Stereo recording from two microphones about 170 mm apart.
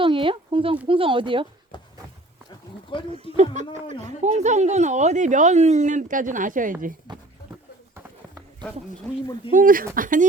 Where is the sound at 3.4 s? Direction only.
45° right (ahead or behind).